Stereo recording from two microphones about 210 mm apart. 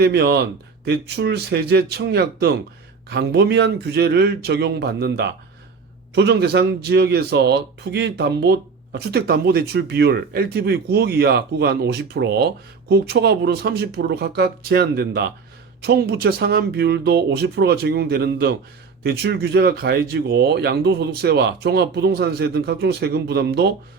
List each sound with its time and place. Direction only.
0.0 s speech: 50° right (ahead or behind)